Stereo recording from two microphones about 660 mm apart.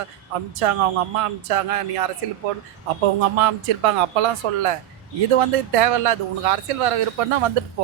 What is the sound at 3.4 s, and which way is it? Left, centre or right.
A man's voice, right.